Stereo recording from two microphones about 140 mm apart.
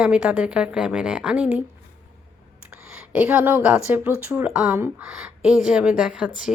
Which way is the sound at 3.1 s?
10° right (ahead or behind).